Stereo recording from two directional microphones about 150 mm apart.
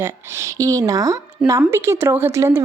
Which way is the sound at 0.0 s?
20° right (ahead or behind).